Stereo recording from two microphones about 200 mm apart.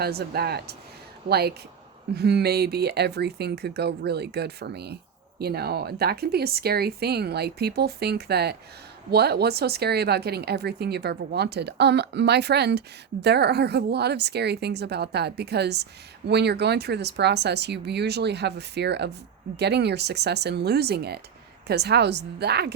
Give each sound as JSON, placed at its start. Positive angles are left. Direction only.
{"t": 0.0, "sound": "a woman's voice", "side_deg": -50}